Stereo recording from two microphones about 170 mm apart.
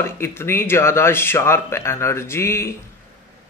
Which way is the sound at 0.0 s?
15° left (ahead or behind).